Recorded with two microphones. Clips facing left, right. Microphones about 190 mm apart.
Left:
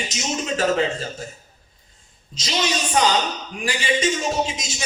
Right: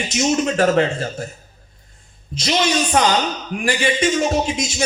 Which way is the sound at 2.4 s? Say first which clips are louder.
Right 6 dB; 50° right (ahead or behind).